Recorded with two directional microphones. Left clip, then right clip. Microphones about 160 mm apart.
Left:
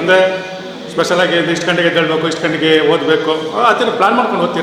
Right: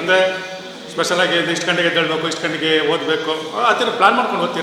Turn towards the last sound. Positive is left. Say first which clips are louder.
# left 2 dB
turn(degrees=10)  # may be behind; listen again after turning